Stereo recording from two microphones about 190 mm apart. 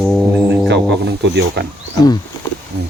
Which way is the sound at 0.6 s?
65° right (ahead or behind).